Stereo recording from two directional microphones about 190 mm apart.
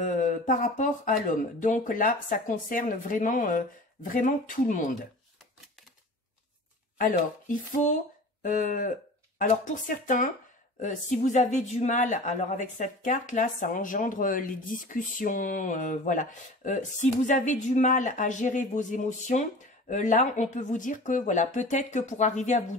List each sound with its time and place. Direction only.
0.0 s speech: 40° left (ahead or behind)
7.0 s speech: 45° left (ahead or behind)